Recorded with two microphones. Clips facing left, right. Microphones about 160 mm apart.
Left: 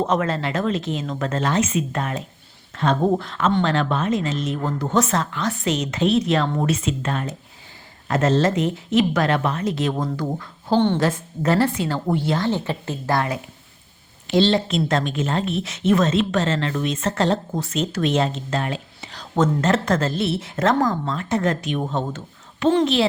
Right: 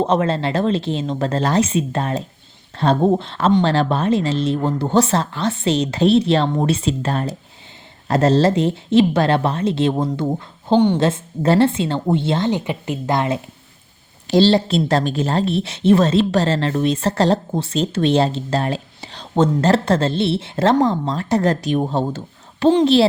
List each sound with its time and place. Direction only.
0.0 s a woman's voice: 30° right (ahead or behind)
10.8 s a woman's voice: 10° right (ahead or behind)
11.0 s a woman's voice: 25° right (ahead or behind)
14.3 s speech: 35° right (ahead or behind)